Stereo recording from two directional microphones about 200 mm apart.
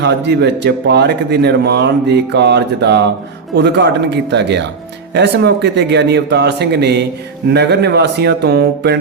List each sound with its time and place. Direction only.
0.0 s speech: 60° right (ahead or behind)